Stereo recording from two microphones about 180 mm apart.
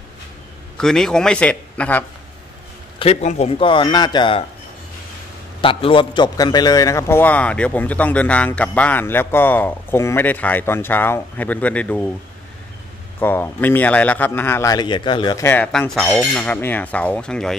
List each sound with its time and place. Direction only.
0.7 s a man's voice: 5° left (ahead or behind)
3.0 s speech: 35° left (ahead or behind)
5.6 s a man's voice: 30° left (ahead or behind); by 12.1 s 5° left (ahead or behind)
13.2 s a man's voice: 10° left (ahead or behind)
15.4 s a man's voice: 10° left (ahead or behind)